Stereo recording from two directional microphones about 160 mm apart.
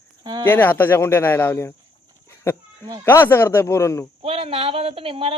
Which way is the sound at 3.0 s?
15° left (ahead or behind).